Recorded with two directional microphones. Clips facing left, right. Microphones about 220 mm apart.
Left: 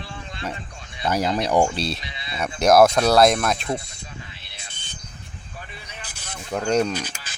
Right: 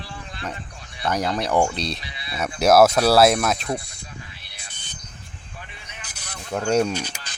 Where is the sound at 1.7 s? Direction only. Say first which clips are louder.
Left 2 dB; 5° left (ahead or behind).